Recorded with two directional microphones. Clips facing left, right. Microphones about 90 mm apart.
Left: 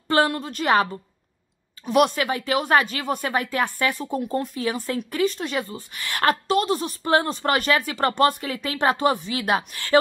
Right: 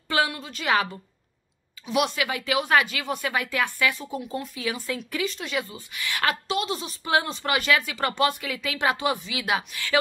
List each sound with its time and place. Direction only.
0.1 s a woman's voice: 45° left (ahead or behind)
1.9 s a woman's voice: 45° left (ahead or behind)